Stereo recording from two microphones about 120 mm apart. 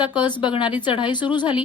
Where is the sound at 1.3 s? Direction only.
40° left (ahead or behind).